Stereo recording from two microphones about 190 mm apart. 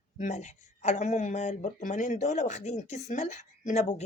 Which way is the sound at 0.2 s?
35° left (ahead or behind).